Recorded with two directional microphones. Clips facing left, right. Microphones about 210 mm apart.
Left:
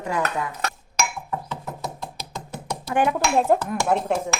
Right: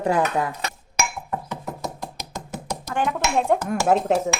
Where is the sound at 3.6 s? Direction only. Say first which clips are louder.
Right 3 dB; 45° right (ahead or behind).